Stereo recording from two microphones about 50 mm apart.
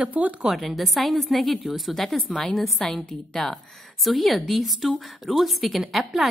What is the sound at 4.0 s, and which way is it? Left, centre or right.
A woman's voice, centre.